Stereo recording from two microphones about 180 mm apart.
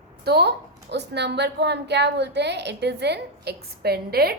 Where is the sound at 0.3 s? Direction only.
65° right (ahead or behind).